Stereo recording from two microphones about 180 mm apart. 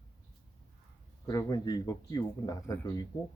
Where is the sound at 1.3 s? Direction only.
20° left (ahead or behind).